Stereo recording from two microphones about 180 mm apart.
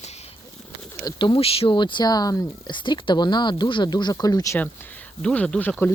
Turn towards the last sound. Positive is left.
turn(degrees=10)  # may be behind; listen again after turning